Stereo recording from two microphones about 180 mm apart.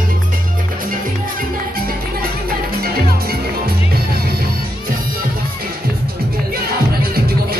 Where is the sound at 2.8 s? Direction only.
55° right (ahead or behind).